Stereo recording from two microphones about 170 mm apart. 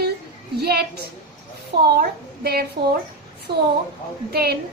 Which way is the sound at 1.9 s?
65° right (ahead or behind).